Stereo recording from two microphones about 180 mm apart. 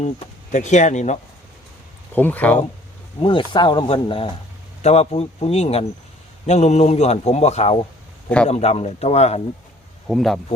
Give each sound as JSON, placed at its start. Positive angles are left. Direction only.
{"t": 0.5, "sound": "a man's voice", "side_deg": 40}
{"t": 2.1, "sound": "speech", "side_deg": 10}
{"t": 3.2, "sound": "a man's voice", "side_deg": 25}
{"t": 10.1, "sound": "speech", "side_deg": 0}